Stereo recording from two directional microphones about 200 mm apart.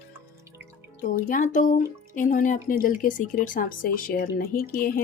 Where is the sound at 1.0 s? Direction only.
40° left (ahead or behind).